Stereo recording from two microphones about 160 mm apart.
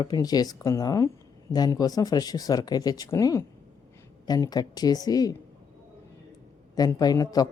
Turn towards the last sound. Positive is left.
turn(degrees=25)  # may be behind; listen again after turning